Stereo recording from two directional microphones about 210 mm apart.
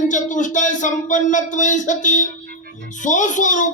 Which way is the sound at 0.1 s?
35° left (ahead or behind).